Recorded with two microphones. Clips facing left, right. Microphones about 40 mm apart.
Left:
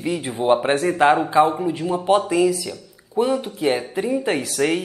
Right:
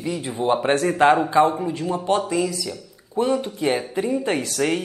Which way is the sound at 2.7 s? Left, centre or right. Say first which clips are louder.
Even; centre.